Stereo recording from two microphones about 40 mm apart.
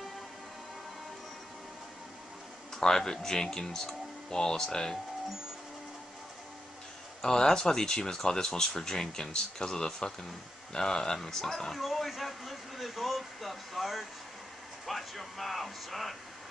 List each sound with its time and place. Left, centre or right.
2.7 s speech: centre
7.2 s speech: centre
11.8 s a sound: centre
14.9 s speech: centre